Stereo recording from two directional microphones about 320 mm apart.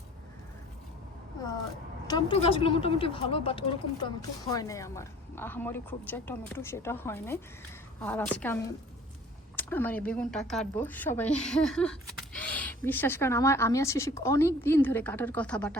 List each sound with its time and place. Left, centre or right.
2.0 s a woman's voice: centre